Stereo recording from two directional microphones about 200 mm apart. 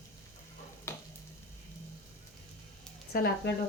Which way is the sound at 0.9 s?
10° left (ahead or behind).